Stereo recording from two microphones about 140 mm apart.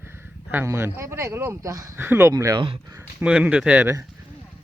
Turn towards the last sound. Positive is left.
turn(degrees=-10)  # may be behind; listen again after turning